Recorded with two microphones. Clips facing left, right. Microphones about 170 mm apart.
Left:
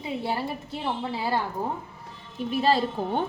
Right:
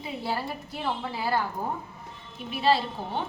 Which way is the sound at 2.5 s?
40° left (ahead or behind).